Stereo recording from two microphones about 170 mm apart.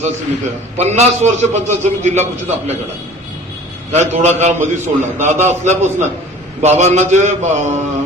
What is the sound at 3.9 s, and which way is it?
A man's voice, 40° right (ahead or behind).